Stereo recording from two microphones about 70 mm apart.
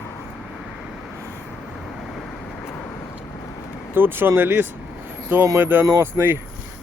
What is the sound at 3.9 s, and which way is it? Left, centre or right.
Speech, right.